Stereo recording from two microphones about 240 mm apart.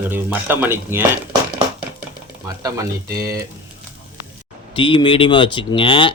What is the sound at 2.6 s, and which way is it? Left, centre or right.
Speech, centre.